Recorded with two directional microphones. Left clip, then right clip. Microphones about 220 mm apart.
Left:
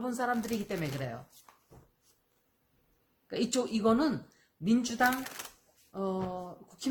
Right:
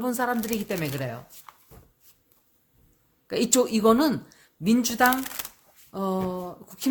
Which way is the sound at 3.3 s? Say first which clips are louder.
Right 9 dB; 40° right (ahead or behind).